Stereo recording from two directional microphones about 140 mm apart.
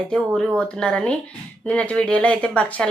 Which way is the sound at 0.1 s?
5° left (ahead or behind).